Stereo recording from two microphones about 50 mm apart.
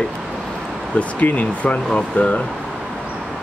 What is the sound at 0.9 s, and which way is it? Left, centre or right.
Speech, left.